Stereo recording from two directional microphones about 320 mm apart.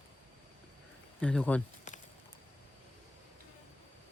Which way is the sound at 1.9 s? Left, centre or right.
Left.